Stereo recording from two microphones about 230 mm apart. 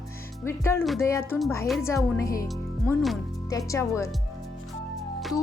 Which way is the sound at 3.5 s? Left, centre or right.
Centre.